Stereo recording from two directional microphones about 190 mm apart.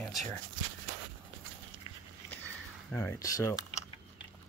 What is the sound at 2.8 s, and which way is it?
Speech, 15° left (ahead or behind).